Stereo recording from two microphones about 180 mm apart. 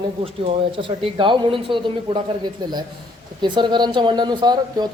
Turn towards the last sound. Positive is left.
turn(degrees=-25)  # may be behind; listen again after turning